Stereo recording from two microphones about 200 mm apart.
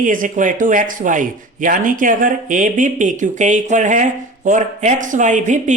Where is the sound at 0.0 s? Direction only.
40° right (ahead or behind).